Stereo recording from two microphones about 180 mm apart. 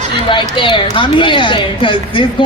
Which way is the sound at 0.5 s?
30° left (ahead or behind).